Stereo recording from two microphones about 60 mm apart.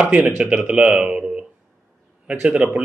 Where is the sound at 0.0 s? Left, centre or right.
Centre.